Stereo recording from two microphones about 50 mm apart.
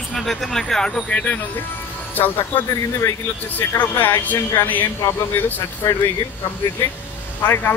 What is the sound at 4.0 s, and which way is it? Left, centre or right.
Speech, left.